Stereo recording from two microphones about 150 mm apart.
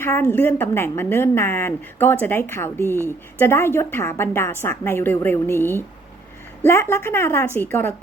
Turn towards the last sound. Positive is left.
turn(degrees=15)  # may be behind; listen again after turning